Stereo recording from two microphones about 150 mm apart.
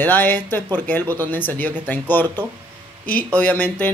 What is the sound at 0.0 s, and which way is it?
Speech, 10° left (ahead or behind).